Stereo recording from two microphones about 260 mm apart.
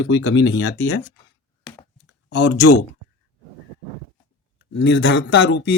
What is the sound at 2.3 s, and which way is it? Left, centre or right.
Speech, left.